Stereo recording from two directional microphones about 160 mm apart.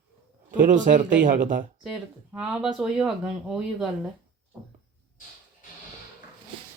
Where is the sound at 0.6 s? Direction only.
55° right (ahead or behind).